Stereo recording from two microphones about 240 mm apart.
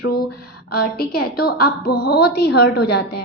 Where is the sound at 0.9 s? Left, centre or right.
Left.